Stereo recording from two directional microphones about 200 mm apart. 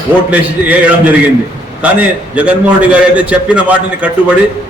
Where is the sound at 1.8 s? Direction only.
5° right (ahead or behind).